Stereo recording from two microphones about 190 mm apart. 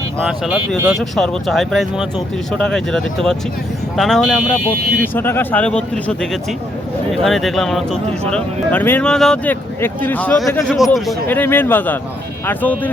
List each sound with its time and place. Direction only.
0.2 s speech: 5° right (ahead or behind)
11.3 s speech: 10° left (ahead or behind)